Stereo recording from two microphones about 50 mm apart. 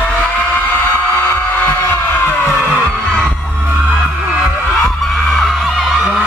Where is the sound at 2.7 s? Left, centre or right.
Centre.